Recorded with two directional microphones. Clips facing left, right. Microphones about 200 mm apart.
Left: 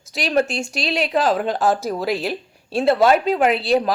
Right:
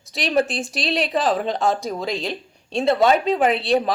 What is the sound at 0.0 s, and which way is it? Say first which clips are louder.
Speech: left 1 dB; centre (ahead or behind).